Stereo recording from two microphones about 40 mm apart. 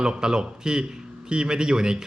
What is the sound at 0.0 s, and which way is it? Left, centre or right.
A man's voice, centre.